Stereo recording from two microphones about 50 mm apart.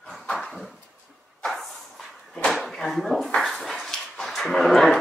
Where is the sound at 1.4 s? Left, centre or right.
Centre.